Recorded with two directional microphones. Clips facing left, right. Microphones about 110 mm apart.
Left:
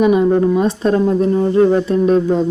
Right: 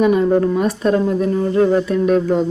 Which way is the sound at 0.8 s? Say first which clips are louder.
Left 2 dB; 30° left (ahead or behind).